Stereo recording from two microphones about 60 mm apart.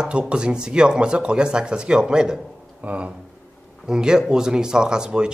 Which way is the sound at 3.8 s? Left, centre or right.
Centre.